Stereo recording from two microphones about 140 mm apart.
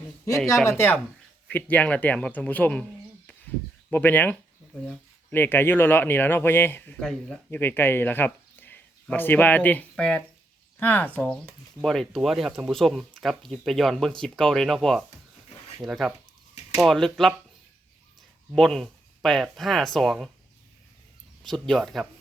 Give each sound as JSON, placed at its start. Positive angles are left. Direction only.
{"t": 0.4, "sound": "speech", "side_deg": 20}
{"t": 3.8, "sound": "speech", "side_deg": 15}
{"t": 7.0, "sound": "speech", "side_deg": 5}
{"t": 7.5, "sound": "speech", "side_deg": 15}
{"t": 18.5, "sound": "speech", "side_deg": 5}
{"t": 21.4, "sound": "speech", "side_deg": 0}